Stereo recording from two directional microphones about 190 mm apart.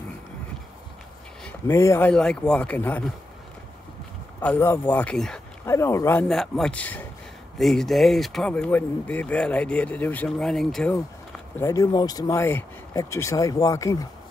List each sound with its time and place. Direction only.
1.4 s speech: 15° left (ahead or behind)
4.4 s speech: 10° left (ahead or behind)
5.7 s speech: 15° left (ahead or behind)
11.5 s speech: 15° left (ahead or behind)